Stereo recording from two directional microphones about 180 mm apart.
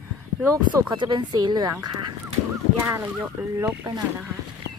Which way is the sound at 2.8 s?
15° right (ahead or behind).